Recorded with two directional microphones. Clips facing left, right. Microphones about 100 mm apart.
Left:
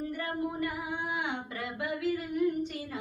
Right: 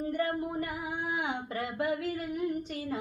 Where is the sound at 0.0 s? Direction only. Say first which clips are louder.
Right 2 dB; 35° right (ahead or behind).